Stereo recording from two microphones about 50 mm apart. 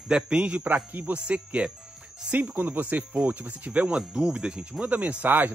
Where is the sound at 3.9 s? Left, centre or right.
Centre; by 5.5 s right.